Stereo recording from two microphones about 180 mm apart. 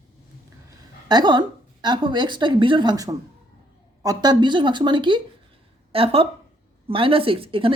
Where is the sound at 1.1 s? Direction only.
25° right (ahead or behind).